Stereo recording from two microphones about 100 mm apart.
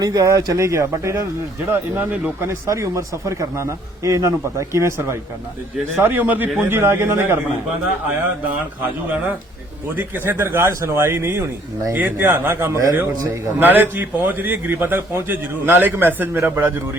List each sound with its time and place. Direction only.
0.0 s a man's voice: 40° right (ahead or behind)
9.9 s a man's voice: 20° right (ahead or behind)